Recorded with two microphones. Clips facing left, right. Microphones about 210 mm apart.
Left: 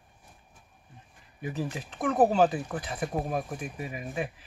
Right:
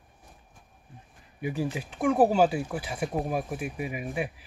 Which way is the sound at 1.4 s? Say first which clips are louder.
Right 3 dB; 10° right (ahead or behind).